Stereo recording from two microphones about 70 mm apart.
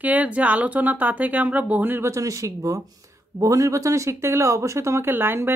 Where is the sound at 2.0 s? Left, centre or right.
Right.